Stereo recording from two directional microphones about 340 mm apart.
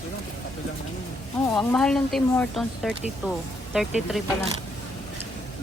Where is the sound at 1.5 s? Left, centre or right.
Centre.